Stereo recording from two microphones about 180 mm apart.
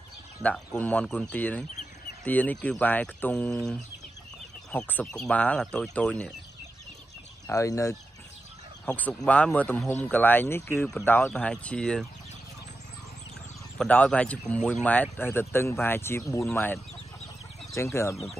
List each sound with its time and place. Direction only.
0.4 s speech: 10° left (ahead or behind)
7.4 s speech: 15° left (ahead or behind)
13.7 s speech: 5° left (ahead or behind)